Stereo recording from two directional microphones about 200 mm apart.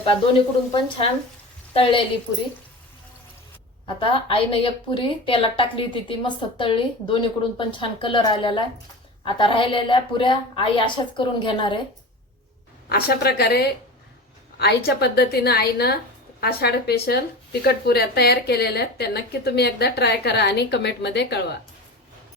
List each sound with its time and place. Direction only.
0.7 s a woman's voice: 30° left (ahead or behind)
3.8 s a woman's voice: 25° left (ahead or behind)
12.9 s a woman's voice: 50° left (ahead or behind)